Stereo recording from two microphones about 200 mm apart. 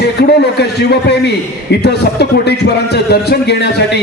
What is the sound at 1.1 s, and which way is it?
A man's voice, 55° left (ahead or behind).